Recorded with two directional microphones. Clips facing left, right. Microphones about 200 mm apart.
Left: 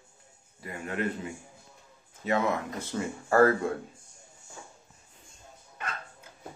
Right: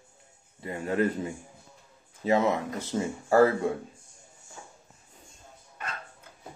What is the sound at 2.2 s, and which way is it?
Speech, 25° right (ahead or behind).